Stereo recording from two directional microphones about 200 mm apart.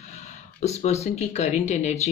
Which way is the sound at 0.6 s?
35° left (ahead or behind).